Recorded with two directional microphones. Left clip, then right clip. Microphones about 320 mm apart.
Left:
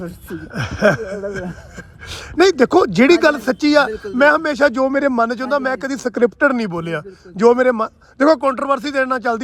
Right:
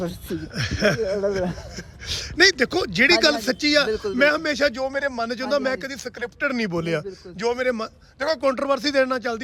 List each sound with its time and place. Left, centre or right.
0.3 s speech: centre
7.3 s speech: centre